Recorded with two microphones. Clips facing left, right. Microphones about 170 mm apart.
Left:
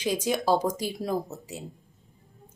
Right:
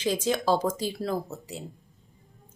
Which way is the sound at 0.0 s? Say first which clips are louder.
Even; 10° left (ahead or behind).